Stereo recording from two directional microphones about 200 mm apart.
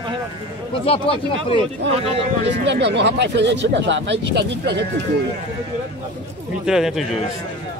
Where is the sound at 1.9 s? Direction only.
30° right (ahead or behind).